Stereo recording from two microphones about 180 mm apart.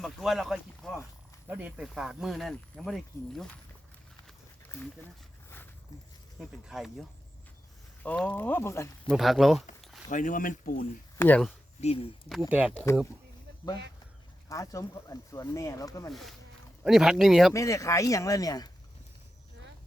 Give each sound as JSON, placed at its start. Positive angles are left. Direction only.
{"t": 0.0, "sound": "speech", "side_deg": 0}
{"t": 4.7, "sound": "speech", "side_deg": 15}
{"t": 6.7, "sound": "speech", "side_deg": 0}
{"t": 8.0, "sound": "speech", "side_deg": 5}
{"t": 9.0, "sound": "speech", "side_deg": 0}
{"t": 10.1, "sound": "speech", "side_deg": 45}
{"t": 11.2, "sound": "speech", "side_deg": 5}
{"t": 11.8, "sound": "speech", "side_deg": 35}
{"t": 12.4, "sound": "speech", "side_deg": -10}
{"t": 14.5, "sound": "speech", "side_deg": 20}
{"t": 16.0, "sound": "speech", "side_deg": 0}
{"t": 17.5, "sound": "speech", "side_deg": 15}